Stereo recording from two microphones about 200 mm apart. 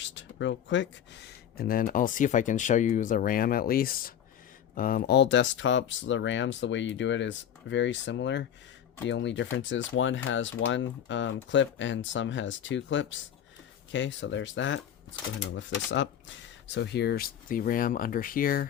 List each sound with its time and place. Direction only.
0.0 s speech: 65° left (ahead or behind); by 18.7 s 45° left (ahead or behind)